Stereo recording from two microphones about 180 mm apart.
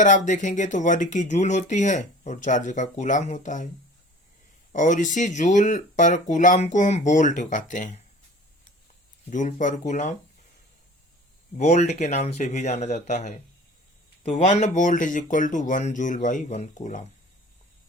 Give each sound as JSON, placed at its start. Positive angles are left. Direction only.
{"t": 0.0, "sound": "speech", "side_deg": 45}
{"t": 4.7, "sound": "speech", "side_deg": 45}
{"t": 9.3, "sound": "speech", "side_deg": 45}
{"t": 11.5, "sound": "speech", "side_deg": 40}